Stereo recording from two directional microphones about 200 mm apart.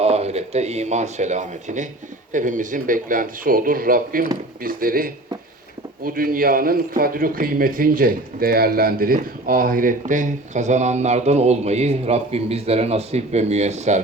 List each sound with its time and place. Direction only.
0.0 s a man's voice: 30° right (ahead or behind)